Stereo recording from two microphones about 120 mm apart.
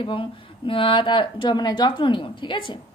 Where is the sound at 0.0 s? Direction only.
45° left (ahead or behind).